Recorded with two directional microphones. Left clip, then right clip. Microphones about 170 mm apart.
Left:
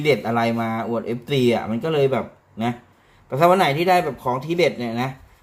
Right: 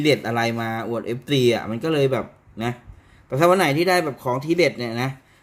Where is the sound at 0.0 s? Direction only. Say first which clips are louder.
Left 1 dB; 30° right (ahead or behind).